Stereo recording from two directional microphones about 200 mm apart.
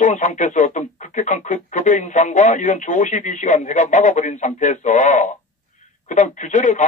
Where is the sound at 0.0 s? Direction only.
35° left (ahead or behind).